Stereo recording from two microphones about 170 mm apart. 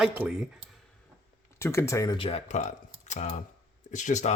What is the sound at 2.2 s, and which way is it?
Speech, 35° left (ahead or behind).